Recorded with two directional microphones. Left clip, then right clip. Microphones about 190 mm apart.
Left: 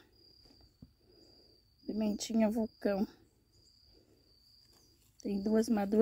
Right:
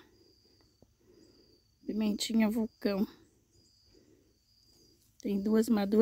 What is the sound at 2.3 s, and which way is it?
Speech, 20° right (ahead or behind).